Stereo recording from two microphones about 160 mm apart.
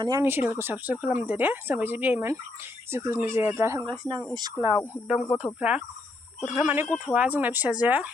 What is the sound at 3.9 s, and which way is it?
Speech, 30° right (ahead or behind).